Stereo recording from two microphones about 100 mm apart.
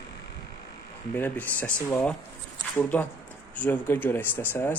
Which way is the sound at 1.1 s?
20° left (ahead or behind).